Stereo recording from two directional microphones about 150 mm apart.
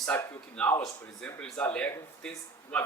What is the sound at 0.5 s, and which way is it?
Speech, 5° left (ahead or behind).